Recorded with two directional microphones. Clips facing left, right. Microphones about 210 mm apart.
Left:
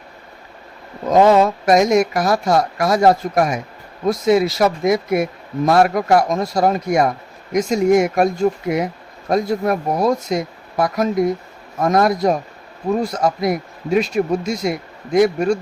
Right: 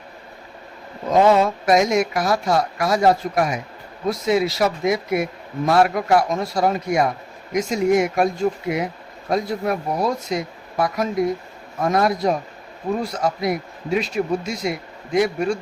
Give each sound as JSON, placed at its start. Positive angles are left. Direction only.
{"t": 1.2, "sound": "speech", "side_deg": 40}